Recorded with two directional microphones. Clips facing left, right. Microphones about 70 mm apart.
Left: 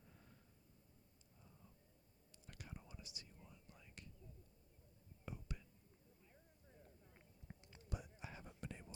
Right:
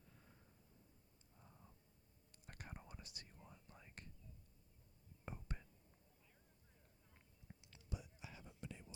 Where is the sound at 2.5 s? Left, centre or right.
Right.